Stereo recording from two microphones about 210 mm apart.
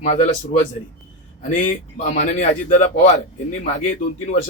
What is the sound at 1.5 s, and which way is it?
Speech, 35° left (ahead or behind).